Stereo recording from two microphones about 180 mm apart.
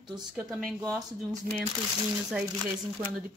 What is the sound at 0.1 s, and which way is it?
Speech, 5° right (ahead or behind).